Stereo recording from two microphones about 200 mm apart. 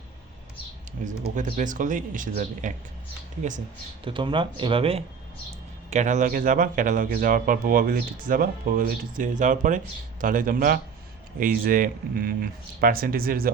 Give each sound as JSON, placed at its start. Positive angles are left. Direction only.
{"t": 1.0, "sound": "speech", "side_deg": -40}
{"t": 4.0, "sound": "speech", "side_deg": -25}